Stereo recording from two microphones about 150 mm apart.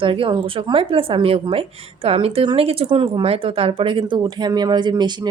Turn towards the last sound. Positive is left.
turn(degrees=-30)  # may be behind; listen again after turning